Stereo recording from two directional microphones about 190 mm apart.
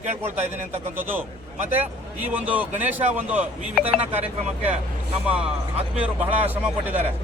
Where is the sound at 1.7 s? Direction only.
10° right (ahead or behind).